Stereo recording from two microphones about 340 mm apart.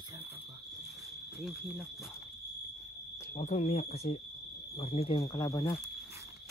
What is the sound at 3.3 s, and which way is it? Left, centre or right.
Speech, left.